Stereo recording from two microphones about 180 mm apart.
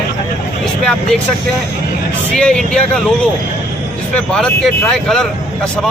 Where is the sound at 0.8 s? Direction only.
5° left (ahead or behind).